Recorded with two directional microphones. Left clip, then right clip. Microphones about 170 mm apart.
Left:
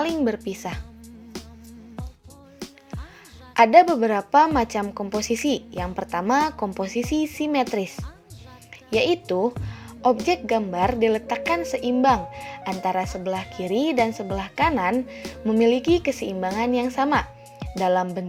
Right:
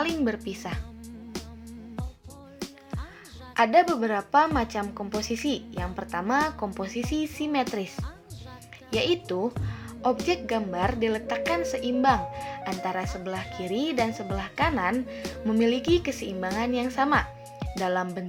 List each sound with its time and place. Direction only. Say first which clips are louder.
0.2 s speech: left 4 dB; 20° left (ahead or behind)
3.5 s a woman's voice: left 6 dB; 40° left (ahead or behind)
9.0 s a woman's voice: left 5 dB; 30° left (ahead or behind)